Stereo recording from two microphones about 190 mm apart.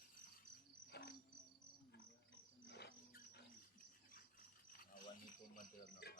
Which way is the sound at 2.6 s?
60° left (ahead or behind).